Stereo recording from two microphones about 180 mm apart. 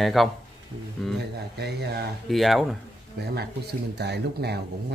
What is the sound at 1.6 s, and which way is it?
Speech, 65° right (ahead or behind).